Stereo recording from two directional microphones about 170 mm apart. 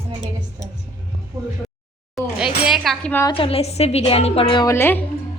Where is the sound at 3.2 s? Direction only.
30° left (ahead or behind).